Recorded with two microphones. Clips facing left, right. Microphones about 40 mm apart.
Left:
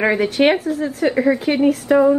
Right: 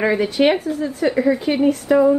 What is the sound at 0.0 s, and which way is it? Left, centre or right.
Speech, centre.